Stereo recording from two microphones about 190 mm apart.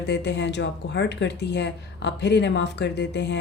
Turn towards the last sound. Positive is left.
turn(degrees=65)  # may be behind; listen again after turning